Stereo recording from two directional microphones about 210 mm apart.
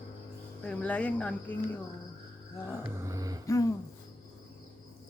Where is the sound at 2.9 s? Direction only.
15° right (ahead or behind).